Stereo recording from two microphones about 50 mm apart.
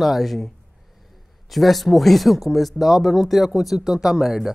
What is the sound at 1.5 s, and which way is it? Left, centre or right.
Speech, centre.